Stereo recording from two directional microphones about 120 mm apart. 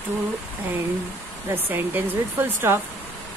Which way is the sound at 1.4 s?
20° right (ahead or behind).